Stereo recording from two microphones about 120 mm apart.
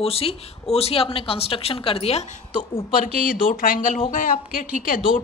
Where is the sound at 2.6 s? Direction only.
50° left (ahead or behind).